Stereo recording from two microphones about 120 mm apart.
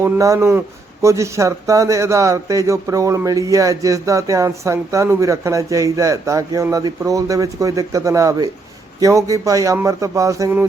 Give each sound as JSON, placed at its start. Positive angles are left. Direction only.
{"t": 0.0, "sound": "speech", "side_deg": -25}